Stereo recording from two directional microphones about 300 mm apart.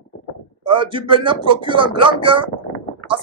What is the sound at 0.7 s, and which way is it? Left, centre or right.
Speech, centre.